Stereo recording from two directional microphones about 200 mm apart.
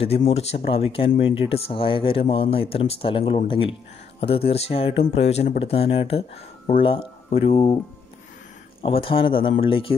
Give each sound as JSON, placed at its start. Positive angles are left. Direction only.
{"t": 0.2, "sound": "speech", "side_deg": 30}
{"t": 8.8, "sound": "speech", "side_deg": 25}